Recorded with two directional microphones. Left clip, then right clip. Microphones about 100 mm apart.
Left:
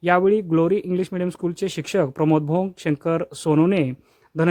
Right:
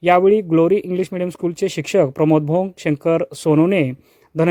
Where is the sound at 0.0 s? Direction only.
30° right (ahead or behind).